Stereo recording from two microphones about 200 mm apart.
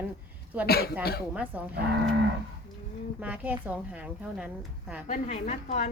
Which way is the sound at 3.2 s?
5° right (ahead or behind).